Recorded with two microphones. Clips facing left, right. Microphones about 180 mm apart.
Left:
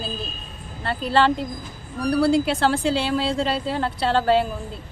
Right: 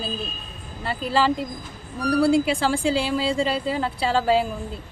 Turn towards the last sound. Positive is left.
turn(degrees=-5)  # may be behind; listen again after turning